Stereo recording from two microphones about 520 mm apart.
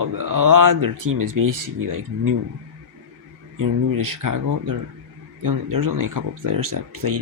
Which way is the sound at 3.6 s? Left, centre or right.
Right.